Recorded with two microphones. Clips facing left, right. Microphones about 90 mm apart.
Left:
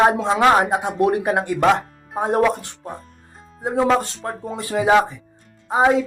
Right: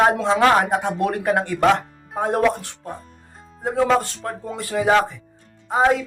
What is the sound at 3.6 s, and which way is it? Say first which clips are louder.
Speech: left 1 dB; 20° left (ahead or behind).